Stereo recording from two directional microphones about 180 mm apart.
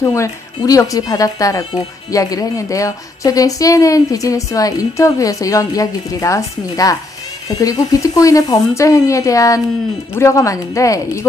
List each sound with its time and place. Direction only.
0.0 s speech: 15° left (ahead or behind)